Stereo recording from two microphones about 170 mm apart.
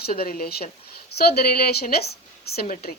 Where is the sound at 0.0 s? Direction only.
60° left (ahead or behind).